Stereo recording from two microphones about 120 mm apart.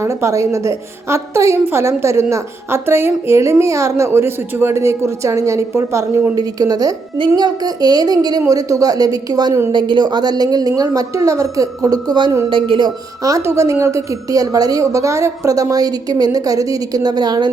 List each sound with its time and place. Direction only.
0.0 s a woman's voice: 25° right (ahead or behind); by 12.9 s 45° right (ahead or behind)
13.2 s a woman's voice: 25° right (ahead or behind)